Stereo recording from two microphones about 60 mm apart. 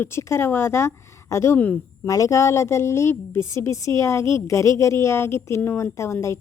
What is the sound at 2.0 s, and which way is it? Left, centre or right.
A woman's voice, left.